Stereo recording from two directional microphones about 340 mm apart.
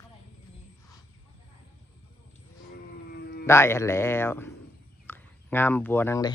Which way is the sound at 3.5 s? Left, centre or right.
Centre.